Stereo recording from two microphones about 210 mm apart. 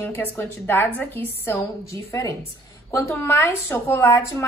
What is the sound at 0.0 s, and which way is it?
A woman's voice, 10° left (ahead or behind).